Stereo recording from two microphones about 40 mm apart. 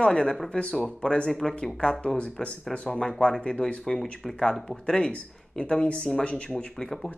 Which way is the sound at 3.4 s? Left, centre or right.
Left.